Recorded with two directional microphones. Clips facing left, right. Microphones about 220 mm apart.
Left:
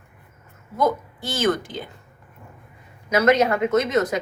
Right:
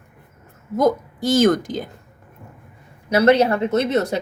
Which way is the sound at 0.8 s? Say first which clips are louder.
Right 4 dB; 40° right (ahead or behind).